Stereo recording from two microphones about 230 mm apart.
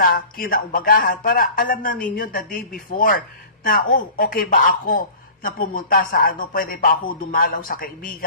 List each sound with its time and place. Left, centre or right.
0.0 s speech: left